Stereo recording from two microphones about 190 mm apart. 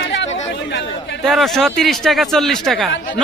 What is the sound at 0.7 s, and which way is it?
Chatter, 70° left (ahead or behind).